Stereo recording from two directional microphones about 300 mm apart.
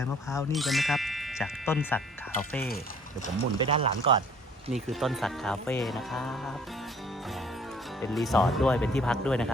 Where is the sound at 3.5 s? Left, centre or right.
Centre.